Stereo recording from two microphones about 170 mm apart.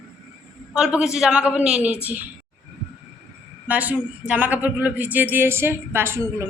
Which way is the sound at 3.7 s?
10° right (ahead or behind).